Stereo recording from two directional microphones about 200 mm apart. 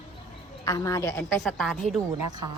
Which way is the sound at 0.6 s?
15° left (ahead or behind).